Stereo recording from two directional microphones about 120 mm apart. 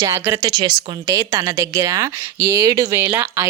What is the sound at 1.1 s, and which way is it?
A woman's voice, 30° right (ahead or behind).